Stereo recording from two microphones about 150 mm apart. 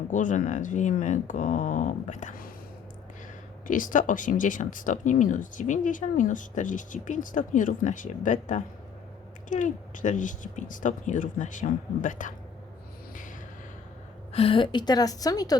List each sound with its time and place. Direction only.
0.1 s speech: 60° left (ahead or behind)
3.7 s speech: 60° left (ahead or behind)
14.3 s a woman's voice: 40° left (ahead or behind)